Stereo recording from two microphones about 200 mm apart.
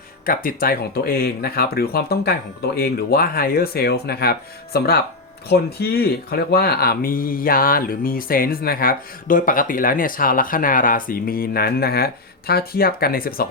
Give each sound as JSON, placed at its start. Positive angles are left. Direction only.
{"t": 0.3, "sound": "speech", "side_deg": 45}